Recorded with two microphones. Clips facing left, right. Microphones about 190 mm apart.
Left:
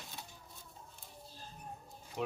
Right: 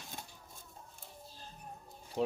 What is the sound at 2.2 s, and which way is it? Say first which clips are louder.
Speech: right 5 dB; 35° right (ahead or behind).